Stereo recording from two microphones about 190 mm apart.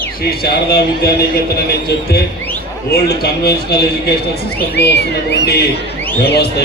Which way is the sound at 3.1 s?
55° left (ahead or behind).